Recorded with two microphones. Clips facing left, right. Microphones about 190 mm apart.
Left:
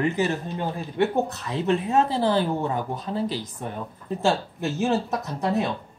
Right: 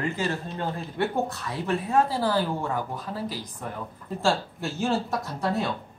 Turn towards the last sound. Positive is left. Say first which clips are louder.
# left 3 dB
turn(degrees=20)  # may be behind; listen again after turning